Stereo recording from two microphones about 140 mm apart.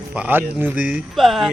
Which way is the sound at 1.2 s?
Centre (ahead or behind).